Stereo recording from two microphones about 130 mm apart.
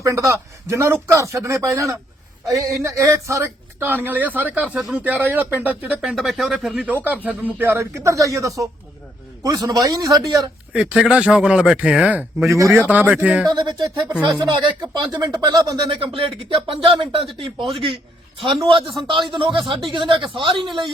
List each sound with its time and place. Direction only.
0.0 s a man's voice: 25° right (ahead or behind)
6.0 s a man's voice: centre (ahead or behind); by 10.5 s 30° right (ahead or behind)
10.7 s speech: 10° right (ahead or behind)
12.5 s a man's voice: 25° right (ahead or behind); by 13.5 s 10° right (ahead or behind)
13.5 s speech: 35° right (ahead or behind)
16.0 s speech: 45° right (ahead or behind)